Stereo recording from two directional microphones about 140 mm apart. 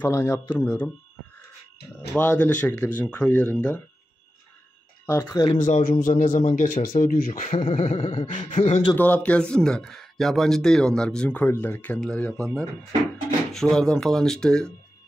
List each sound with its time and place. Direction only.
0.0 s speech: 20° left (ahead or behind)
2.1 s speech: 10° left (ahead or behind)
5.0 s speech: 20° left (ahead or behind)
5.9 s speech: 90° left
6.2 s speech: 70° left (ahead or behind)
7.6 s a sound: 45° left (ahead or behind)
8.5 s a man's voice: 55° left (ahead or behind)
8.9 s speech: 10° left (ahead or behind)